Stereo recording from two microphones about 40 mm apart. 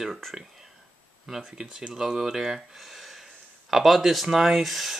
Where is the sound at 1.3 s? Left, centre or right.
Centre.